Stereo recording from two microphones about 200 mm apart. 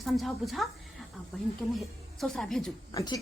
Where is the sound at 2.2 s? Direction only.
Centre (ahead or behind).